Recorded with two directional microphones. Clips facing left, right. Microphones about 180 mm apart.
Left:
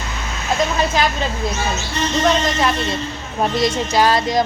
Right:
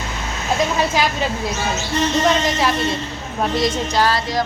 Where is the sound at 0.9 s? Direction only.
10° right (ahead or behind).